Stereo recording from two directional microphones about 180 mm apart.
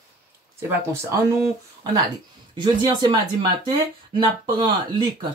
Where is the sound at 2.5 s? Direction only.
25° right (ahead or behind).